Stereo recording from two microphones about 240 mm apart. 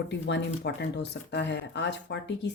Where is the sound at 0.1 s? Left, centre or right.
Left.